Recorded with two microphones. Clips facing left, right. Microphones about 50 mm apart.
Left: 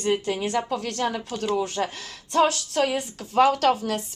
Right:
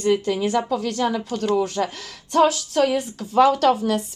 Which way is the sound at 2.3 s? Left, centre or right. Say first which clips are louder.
Right 3 dB; left.